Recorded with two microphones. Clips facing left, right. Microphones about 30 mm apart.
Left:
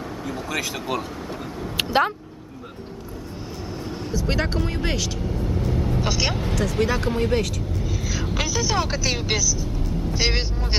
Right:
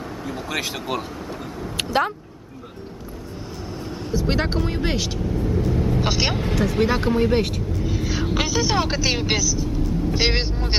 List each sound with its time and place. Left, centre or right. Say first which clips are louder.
0.5 s speech: right 1 dB; centre
1.9 s speech: left 1 dB; centre
4.3 s speech: right 1 dB; centre
5.3 s vehicle: right 5 dB; centre
5.9 s speech: right 2 dB; right
7.3 s speech: right 2 dB; right
7.9 s vehicle: right 5 dB; right
9.2 s speech: right 2 dB; centre